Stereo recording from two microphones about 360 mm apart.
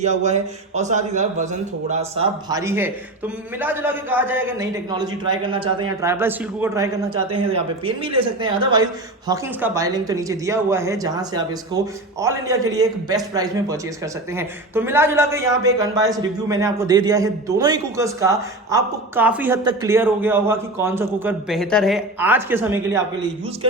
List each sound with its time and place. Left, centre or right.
0.0 s a man's voice: centre